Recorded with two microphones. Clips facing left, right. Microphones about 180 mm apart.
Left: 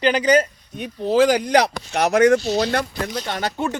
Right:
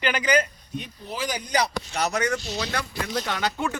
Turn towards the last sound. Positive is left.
turn(degrees=40)  # may be behind; listen again after turning